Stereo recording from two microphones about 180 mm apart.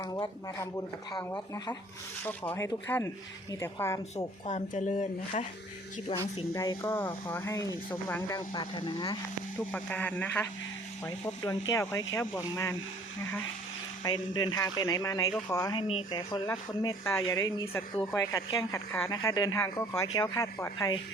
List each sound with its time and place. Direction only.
0.0 s speech: 20° left (ahead or behind)
2.2 s speech: 10° left (ahead or behind)
4.4 s speech: 40° left (ahead or behind)
6.1 s speech: 30° left (ahead or behind)
6.5 s speech: 15° left (ahead or behind)
9.7 s speech: 10° left (ahead or behind)
14.0 s speech: 25° left (ahead or behind)
17.2 s speech: 20° left (ahead or behind)